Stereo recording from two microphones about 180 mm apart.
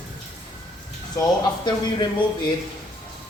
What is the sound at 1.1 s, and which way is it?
Speech, 25° left (ahead or behind).